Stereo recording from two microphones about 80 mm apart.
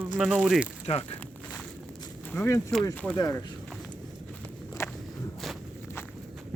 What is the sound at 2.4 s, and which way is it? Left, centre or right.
Speech, left.